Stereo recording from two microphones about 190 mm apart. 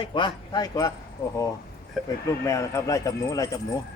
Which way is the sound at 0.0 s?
25° left (ahead or behind).